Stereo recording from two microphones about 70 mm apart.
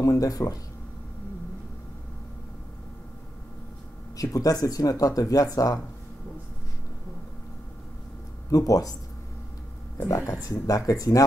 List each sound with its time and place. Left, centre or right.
0.0 s speech: left
4.2 s speech: left
8.5 s speech: left
10.0 s speech: left